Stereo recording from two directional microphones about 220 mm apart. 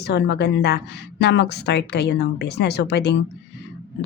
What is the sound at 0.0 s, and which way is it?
A woman's voice, 50° left (ahead or behind).